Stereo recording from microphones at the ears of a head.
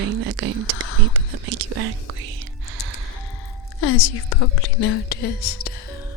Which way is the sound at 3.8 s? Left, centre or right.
Left.